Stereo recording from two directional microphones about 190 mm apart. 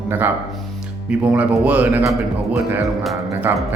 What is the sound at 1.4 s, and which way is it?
Speech, 5° right (ahead or behind).